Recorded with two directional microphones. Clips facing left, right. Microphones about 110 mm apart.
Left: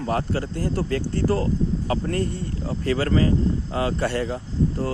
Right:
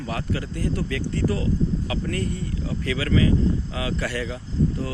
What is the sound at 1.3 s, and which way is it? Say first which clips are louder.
Speech: left 2 dB; 45° left (ahead or behind).